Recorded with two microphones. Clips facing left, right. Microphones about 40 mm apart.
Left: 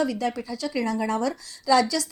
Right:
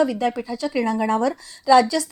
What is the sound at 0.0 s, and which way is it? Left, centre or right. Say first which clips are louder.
A woman's voice: right 5 dB; right.